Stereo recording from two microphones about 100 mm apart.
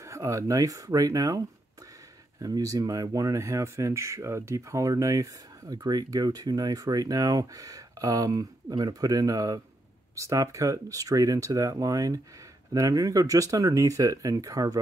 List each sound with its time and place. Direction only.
0.0 s speech: 30° right (ahead or behind)
2.4 s speech: 35° right (ahead or behind)